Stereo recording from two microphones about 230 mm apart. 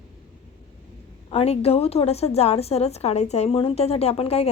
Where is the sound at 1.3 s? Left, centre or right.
Left.